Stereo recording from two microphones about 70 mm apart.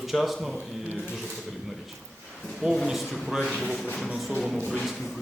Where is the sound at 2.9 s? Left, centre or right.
Centre.